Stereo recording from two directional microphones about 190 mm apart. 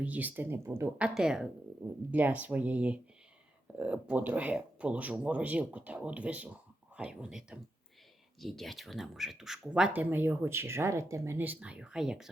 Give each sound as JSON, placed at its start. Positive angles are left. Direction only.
{"t": 0.0, "sound": "speech", "side_deg": -10}